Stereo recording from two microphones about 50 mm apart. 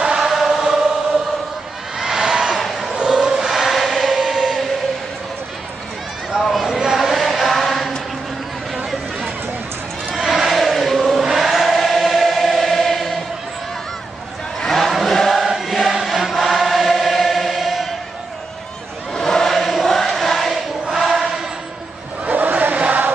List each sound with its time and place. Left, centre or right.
0.0 s choir: centre
0.3 s choir: centre
2.0 s a sound: centre
3.1 s choir: centre
6.5 s a sound: centre
10.2 s chant: centre
11.3 s choir: centre
14.6 s chant: centre
15.4 s choir: centre
16.0 s chant: centre
19.1 s choir: centre
22.2 s chant: right